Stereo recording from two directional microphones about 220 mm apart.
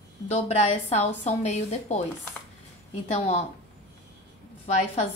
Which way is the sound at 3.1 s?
30° left (ahead or behind).